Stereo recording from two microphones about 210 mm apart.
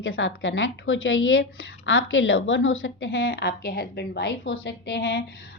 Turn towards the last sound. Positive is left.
turn(degrees=55)  # may be behind; listen again after turning